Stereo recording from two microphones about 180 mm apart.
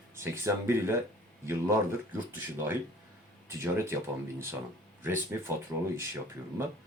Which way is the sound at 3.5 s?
15° right (ahead or behind).